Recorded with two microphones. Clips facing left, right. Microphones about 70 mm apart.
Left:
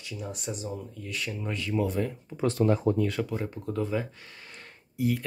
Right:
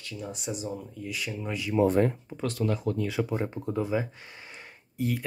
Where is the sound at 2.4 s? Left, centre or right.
Left.